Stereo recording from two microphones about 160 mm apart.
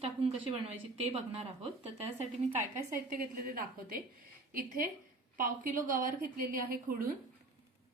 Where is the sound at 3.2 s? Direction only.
65° right (ahead or behind).